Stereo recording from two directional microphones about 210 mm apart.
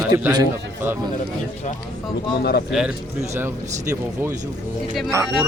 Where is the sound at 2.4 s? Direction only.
50° left (ahead or behind).